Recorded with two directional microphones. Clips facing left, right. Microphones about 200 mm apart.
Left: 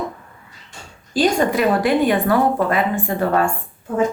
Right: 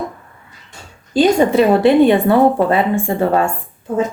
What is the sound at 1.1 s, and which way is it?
A woman's voice, 25° right (ahead or behind).